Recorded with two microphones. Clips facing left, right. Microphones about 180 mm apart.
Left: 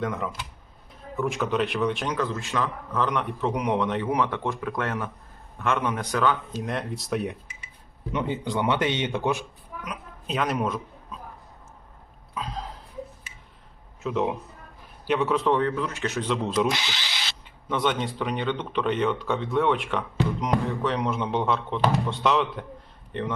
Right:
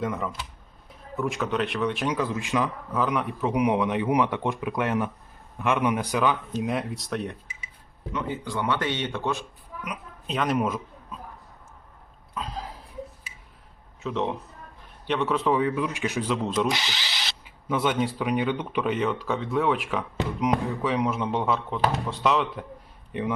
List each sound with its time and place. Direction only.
0.0 s a man's voice: centre (ahead or behind)
8.1 s speech: 20° left (ahead or behind)
10.2 s speech: centre (ahead or behind)
12.3 s cough: centre (ahead or behind)
14.0 s a man's voice: 5° left (ahead or behind)